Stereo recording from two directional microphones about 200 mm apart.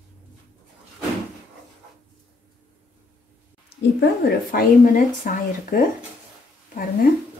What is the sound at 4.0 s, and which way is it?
Speech, 45° left (ahead or behind).